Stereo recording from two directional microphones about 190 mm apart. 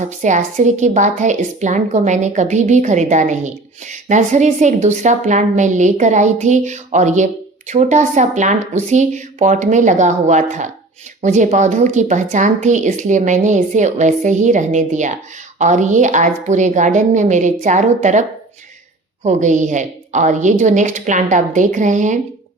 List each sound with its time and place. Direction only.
0.0 s a woman's voice: 40° right (ahead or behind)